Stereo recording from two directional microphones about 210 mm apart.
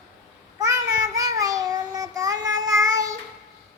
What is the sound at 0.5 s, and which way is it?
Child singing, 15° right (ahead or behind).